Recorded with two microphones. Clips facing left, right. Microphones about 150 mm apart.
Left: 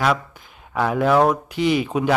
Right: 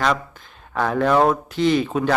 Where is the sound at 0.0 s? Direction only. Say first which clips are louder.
Left 1 dB; 10° left (ahead or behind).